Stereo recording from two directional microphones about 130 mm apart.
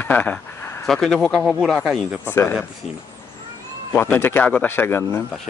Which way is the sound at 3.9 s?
20° left (ahead or behind).